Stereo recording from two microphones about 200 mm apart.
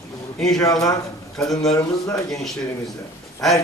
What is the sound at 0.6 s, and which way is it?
Speech, 15° left (ahead or behind).